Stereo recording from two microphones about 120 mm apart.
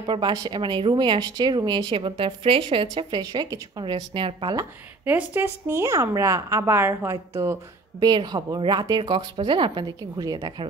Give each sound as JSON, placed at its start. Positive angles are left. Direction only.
{"t": 0.0, "sound": "speech", "side_deg": -40}
{"t": 3.8, "sound": "a woman's voice", "side_deg": -45}
{"t": 5.0, "sound": "a woman's voice", "side_deg": -15}
{"t": 8.0, "sound": "speech", "side_deg": -35}